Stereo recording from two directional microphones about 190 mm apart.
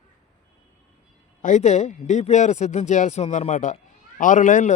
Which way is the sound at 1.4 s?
40° left (ahead or behind).